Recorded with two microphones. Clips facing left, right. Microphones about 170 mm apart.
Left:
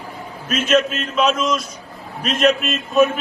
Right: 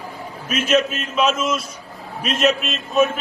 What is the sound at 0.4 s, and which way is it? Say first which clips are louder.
A man's voice: left 1 dB; 10° right (ahead or behind).